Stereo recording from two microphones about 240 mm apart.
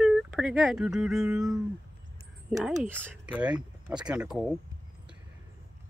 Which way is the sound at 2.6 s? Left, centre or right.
Centre.